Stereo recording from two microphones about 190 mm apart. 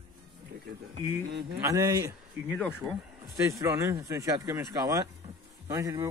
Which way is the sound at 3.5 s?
15° right (ahead or behind).